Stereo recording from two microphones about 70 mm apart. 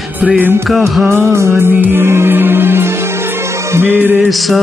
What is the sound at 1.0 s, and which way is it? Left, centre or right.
Music, right.